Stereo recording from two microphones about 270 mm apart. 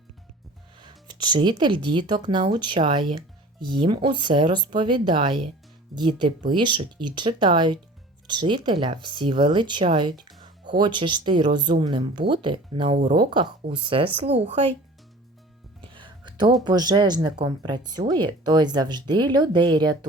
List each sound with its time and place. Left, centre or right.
0.8 s speech: centre
15.8 s a sound: centre
16.6 s speech: centre